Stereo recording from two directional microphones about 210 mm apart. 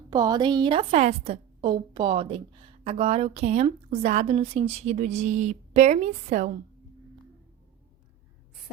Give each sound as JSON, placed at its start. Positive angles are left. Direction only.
{"t": 0.1, "sound": "a woman's voice", "side_deg": -20}